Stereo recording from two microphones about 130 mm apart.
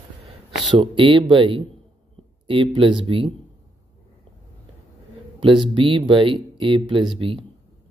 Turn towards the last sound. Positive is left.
turn(degrees=-40)  # may be behind; listen again after turning